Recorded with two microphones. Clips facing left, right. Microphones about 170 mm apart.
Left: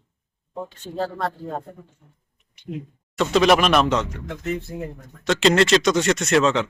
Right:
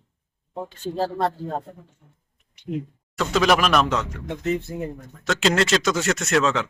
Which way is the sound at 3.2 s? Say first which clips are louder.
Left 3 dB; centre (ahead or behind).